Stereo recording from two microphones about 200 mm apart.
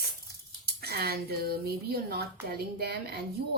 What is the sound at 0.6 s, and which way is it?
Speech, 50° right (ahead or behind).